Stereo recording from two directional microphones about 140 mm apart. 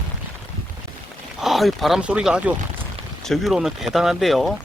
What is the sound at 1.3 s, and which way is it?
Speech, centre (ahead or behind).